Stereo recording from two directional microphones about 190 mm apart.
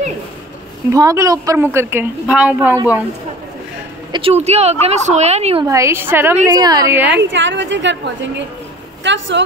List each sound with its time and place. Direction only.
0.9 s a woman's voice: 15° right (ahead or behind)
4.1 s a woman's voice: 30° right (ahead or behind)
5.7 s a woman's voice: 15° right (ahead or behind)
7.2 s a woman's voice: 70° right (ahead or behind)